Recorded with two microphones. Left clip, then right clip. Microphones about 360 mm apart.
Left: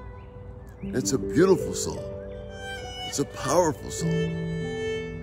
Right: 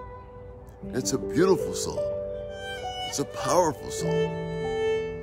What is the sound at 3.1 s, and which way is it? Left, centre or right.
Speech, centre.